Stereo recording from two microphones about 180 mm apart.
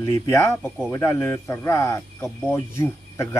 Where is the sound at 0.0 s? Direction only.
15° left (ahead or behind).